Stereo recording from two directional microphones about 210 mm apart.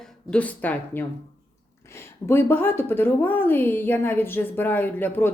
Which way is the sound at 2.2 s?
10° left (ahead or behind).